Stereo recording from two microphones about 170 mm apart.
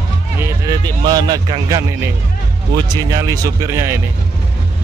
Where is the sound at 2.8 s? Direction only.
20° right (ahead or behind).